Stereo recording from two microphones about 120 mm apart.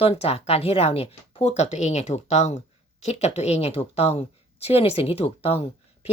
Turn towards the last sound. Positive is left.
turn(degrees=60)  # may be behind; listen again after turning